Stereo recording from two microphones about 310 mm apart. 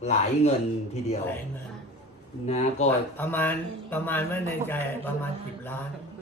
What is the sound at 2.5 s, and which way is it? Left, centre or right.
Speech, left.